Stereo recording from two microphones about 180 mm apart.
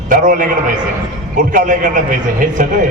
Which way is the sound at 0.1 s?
50° right (ahead or behind).